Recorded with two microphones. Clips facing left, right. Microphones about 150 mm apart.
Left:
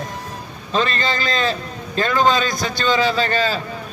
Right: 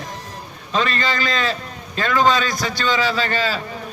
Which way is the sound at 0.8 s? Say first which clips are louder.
Even; 25° left (ahead or behind).